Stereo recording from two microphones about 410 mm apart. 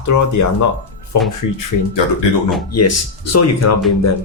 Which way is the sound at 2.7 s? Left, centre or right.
Left.